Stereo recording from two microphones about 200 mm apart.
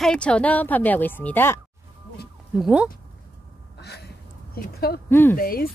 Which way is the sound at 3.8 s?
55° left (ahead or behind).